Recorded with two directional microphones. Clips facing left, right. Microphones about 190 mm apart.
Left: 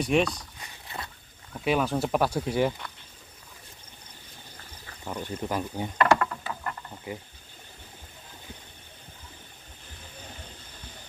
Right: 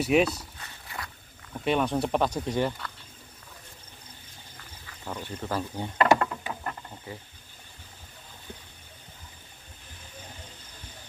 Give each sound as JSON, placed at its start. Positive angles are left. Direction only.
{"t": 0.0, "sound": "speech", "side_deg": -5}
{"t": 0.8, "sound": "a sound", "side_deg": 25}
{"t": 1.6, "sound": "speech", "side_deg": 5}
{"t": 5.2, "sound": "speech", "side_deg": 15}
{"t": 5.9, "sound": "a sound", "side_deg": -20}
{"t": 7.1, "sound": "speech", "side_deg": 15}